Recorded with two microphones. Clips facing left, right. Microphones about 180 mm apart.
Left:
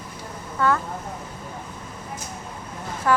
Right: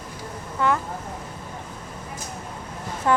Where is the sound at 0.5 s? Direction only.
15° right (ahead or behind).